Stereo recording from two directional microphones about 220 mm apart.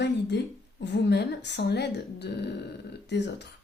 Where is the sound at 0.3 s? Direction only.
50° left (ahead or behind).